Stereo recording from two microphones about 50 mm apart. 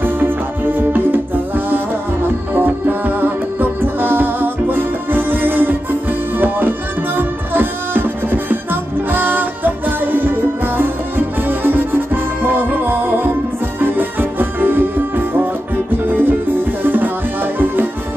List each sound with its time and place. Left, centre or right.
0.0 s music: right